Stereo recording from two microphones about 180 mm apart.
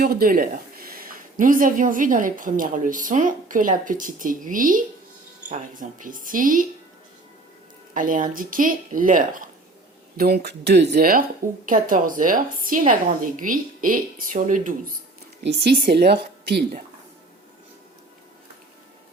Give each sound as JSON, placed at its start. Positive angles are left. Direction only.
{"t": 0.0, "sound": "speech", "side_deg": -55}
{"t": 7.9, "sound": "speech", "side_deg": -50}
{"t": 10.2, "sound": "speech", "side_deg": -60}
{"t": 15.4, "sound": "speech", "side_deg": -65}